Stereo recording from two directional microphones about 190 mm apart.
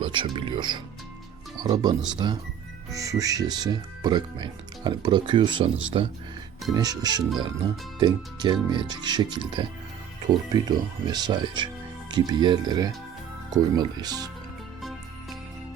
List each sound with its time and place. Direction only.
0.0 s speech: 25° right (ahead or behind)
14.8 s music: centre (ahead or behind)